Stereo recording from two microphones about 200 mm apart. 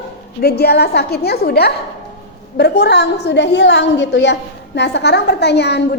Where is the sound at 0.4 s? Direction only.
55° left (ahead or behind).